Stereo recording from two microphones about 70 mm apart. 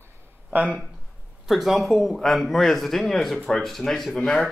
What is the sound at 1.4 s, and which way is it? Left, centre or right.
Speech, centre.